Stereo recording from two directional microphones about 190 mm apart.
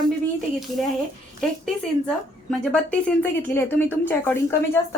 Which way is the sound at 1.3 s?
5° left (ahead or behind).